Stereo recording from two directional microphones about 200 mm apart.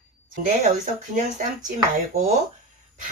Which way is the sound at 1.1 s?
40° right (ahead or behind).